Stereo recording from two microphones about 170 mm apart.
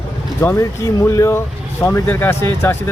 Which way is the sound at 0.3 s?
20° left (ahead or behind).